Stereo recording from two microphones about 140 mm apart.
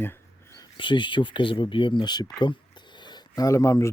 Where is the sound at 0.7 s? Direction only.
35° left (ahead or behind).